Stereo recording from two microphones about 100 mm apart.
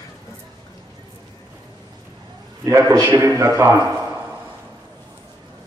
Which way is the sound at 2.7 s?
30° right (ahead or behind).